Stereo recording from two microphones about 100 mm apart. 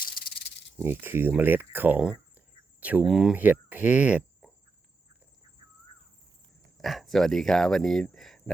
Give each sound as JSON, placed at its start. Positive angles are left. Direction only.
{"t": 0.8, "sound": "speech", "side_deg": -20}
{"t": 3.1, "sound": "speech", "side_deg": -5}
{"t": 3.3, "sound": "speech", "side_deg": -15}
{"t": 6.8, "sound": "speech", "side_deg": 0}